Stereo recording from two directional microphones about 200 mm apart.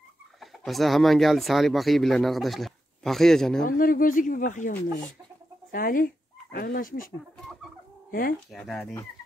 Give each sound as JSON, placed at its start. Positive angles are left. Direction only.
{"t": 0.4, "sound": "speech", "side_deg": 0}
{"t": 3.6, "sound": "speech", "side_deg": 45}
{"t": 8.1, "sound": "speech", "side_deg": 45}
{"t": 8.5, "sound": "speech", "side_deg": 0}